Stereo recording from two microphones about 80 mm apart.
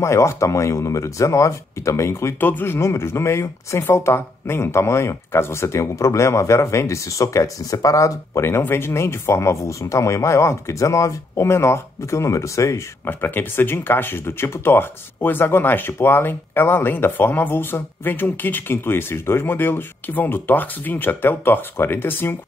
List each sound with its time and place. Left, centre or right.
0.0 s speech: left
2.4 s speech: left